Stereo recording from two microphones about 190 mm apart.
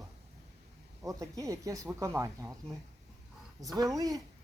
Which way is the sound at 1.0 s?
15° right (ahead or behind).